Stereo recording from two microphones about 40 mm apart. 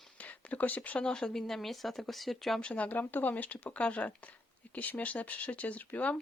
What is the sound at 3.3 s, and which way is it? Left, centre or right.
Speech, left.